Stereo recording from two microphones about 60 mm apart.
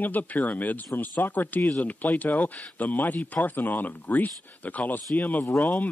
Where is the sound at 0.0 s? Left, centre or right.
Left.